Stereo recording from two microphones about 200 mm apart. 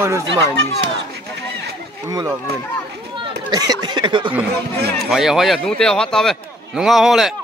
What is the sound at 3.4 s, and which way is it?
Speech, 20° right (ahead or behind).